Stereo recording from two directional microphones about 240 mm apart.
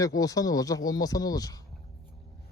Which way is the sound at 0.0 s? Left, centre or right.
Centre.